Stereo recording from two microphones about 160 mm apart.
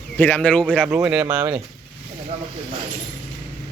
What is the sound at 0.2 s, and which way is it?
Speech, 10° left (ahead or behind).